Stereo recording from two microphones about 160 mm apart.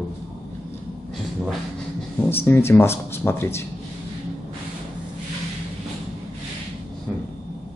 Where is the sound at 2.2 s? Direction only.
15° left (ahead or behind).